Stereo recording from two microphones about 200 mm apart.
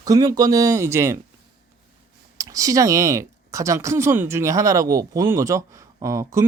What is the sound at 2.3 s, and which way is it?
Speech, 15° right (ahead or behind).